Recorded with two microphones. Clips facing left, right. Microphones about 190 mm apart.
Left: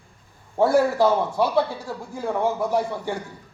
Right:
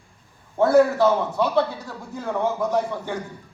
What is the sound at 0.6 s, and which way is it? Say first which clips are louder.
A man's voice: right 2 dB; 10° left (ahead or behind).